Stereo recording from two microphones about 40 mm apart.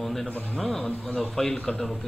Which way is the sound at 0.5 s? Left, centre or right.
Centre.